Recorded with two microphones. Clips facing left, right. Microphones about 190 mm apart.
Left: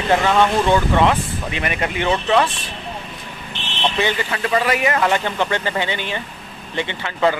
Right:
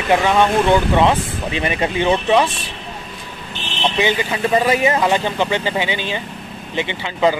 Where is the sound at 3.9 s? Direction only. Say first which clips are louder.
Right 4 dB; 15° right (ahead or behind).